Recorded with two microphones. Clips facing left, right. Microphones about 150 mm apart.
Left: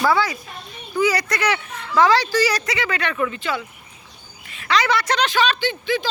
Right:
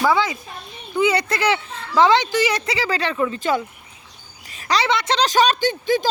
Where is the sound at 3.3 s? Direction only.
45° right (ahead or behind).